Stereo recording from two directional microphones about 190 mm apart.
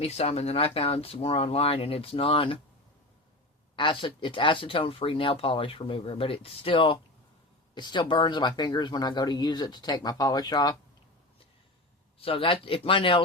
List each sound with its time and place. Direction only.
0.0 s speech: 35° left (ahead or behind)
3.8 s speech: 25° left (ahead or behind)
12.2 s speech: 30° left (ahead or behind)